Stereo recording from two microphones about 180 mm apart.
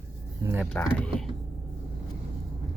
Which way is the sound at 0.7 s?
5° left (ahead or behind).